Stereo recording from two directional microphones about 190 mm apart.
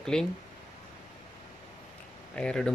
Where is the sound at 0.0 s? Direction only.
5° left (ahead or behind).